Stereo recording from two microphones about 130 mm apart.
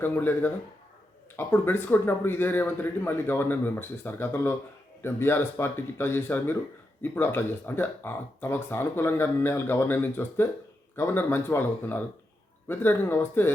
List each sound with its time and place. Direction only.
0.0 s speech: 15° left (ahead or behind)